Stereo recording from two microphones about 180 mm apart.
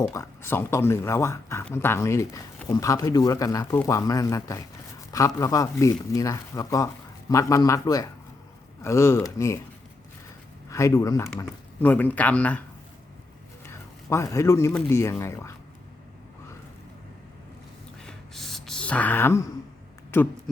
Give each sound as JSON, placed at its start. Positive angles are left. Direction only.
{"t": 0.0, "sound": "speech", "side_deg": 15}
{"t": 10.7, "sound": "speech", "side_deg": 15}
{"t": 13.7, "sound": "a sound", "side_deg": 15}
{"t": 14.7, "sound": "speech", "side_deg": 10}
{"t": 18.0, "sound": "a sound", "side_deg": 0}
{"t": 20.1, "sound": "speech", "side_deg": 15}